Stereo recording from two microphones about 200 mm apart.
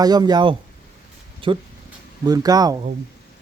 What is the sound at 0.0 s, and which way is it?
Speech, 20° right (ahead or behind).